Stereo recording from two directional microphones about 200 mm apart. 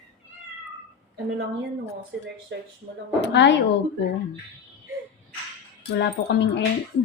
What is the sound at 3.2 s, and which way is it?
Speech, 60° left (ahead or behind).